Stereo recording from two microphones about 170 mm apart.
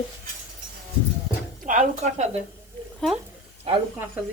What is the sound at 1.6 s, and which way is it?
Speech, 45° right (ahead or behind).